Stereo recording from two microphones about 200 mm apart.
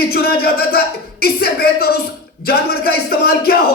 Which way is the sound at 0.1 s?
50° left (ahead or behind).